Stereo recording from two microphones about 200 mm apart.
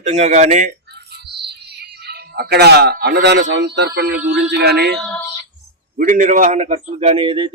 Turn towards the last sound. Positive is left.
turn(degrees=-30)  # may be behind; listen again after turning